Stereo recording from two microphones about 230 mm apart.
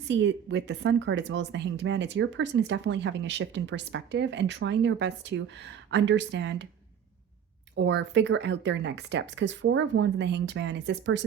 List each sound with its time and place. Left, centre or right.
0.1 s speech: right
7.8 s speech: right